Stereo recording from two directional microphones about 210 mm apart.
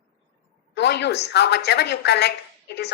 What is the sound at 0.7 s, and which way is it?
A woman's voice, 55° left (ahead or behind).